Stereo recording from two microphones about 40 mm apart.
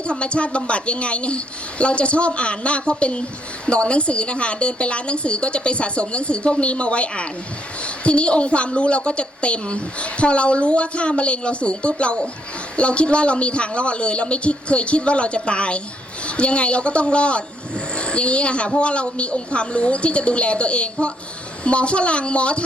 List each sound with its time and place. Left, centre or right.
0.1 s a woman's voice: left